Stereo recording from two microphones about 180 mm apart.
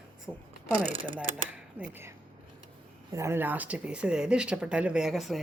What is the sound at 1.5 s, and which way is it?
A woman's voice, 10° right (ahead or behind).